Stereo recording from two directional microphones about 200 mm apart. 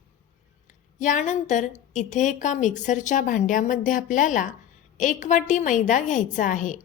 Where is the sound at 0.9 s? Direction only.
40° left (ahead or behind).